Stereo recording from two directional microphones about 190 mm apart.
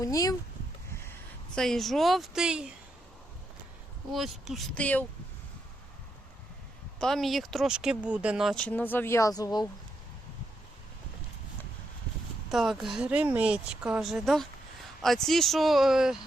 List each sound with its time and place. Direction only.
0.0 s speech: 20° left (ahead or behind)
1.5 s speech: centre (ahead or behind)
4.1 s speech: centre (ahead or behind)
7.0 s speech: centre (ahead or behind); by 9.6 s 20° left (ahead or behind)
12.5 s speech: centre (ahead or behind)